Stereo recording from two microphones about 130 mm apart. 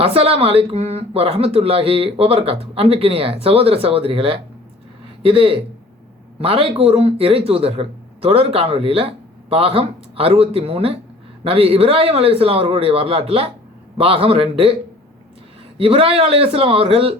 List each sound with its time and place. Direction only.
0.0 s a man's voice: 50° right (ahead or behind)
15.8 s a man's voice: 45° right (ahead or behind)